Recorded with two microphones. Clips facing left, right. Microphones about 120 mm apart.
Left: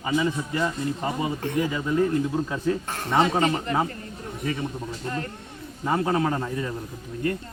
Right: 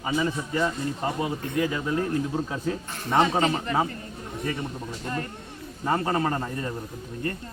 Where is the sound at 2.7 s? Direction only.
65° left (ahead or behind).